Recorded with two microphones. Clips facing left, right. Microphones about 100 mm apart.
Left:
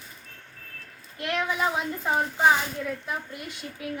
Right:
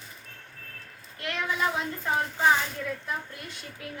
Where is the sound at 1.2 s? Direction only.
20° left (ahead or behind).